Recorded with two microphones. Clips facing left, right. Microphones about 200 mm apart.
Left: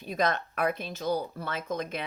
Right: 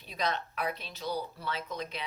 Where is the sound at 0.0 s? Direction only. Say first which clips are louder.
Left 5 dB; 50° left (ahead or behind).